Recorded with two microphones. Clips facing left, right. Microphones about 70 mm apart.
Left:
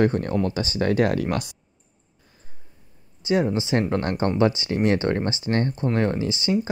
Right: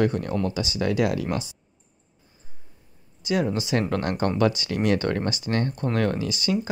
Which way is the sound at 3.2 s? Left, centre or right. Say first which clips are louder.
Left 3 dB; left.